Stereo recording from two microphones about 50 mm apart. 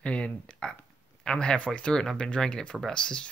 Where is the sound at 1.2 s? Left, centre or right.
Centre.